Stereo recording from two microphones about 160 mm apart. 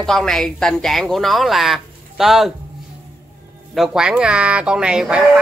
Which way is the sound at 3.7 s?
Centre (ahead or behind).